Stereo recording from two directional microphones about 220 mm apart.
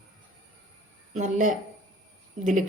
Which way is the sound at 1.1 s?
35° right (ahead or behind).